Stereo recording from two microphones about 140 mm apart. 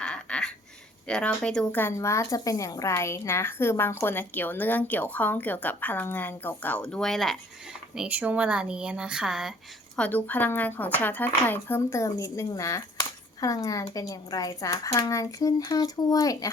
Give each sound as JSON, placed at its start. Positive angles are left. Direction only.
{"t": 0.0, "sound": "duck", "side_deg": 5}
{"t": 1.0, "sound": "speech", "side_deg": 5}
{"t": 7.9, "sound": "speech", "side_deg": -10}
{"t": 10.0, "sound": "speech", "side_deg": 10}